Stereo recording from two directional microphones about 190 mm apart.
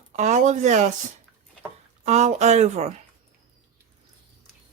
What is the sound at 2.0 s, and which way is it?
Speech, 35° right (ahead or behind).